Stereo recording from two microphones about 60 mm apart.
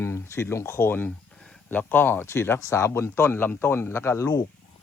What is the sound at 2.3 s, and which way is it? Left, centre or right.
Speech, left.